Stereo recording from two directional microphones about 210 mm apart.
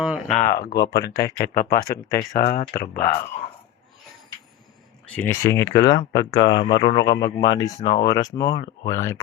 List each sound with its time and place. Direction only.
0.0 s speech: 5° right (ahead or behind)
0.3 s speech: 45° left (ahead or behind)
5.1 s speech: 10° left (ahead or behind)